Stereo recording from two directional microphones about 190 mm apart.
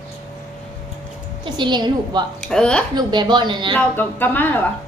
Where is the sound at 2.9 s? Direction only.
25° right (ahead or behind).